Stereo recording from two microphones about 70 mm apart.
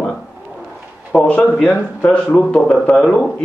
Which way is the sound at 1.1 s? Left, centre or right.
Centre.